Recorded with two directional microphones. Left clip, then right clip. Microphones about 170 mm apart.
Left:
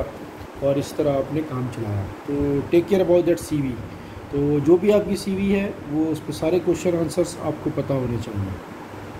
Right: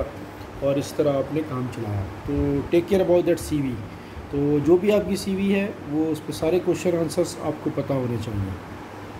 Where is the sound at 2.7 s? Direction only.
5° right (ahead or behind).